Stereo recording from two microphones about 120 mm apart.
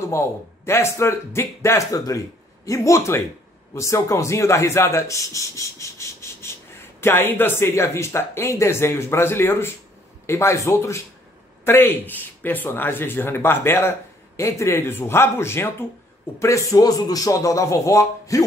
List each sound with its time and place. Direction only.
0.1 s a man's voice: 20° left (ahead or behind)